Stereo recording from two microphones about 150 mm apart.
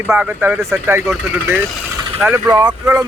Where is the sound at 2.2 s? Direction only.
5° right (ahead or behind).